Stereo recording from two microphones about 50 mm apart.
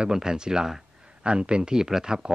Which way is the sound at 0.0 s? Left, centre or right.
Centre.